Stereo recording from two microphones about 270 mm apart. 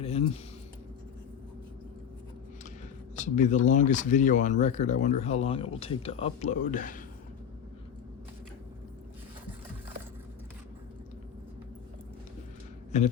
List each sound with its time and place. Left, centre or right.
0.0 s a sound: left
3.2 s speech: left
12.9 s speech: left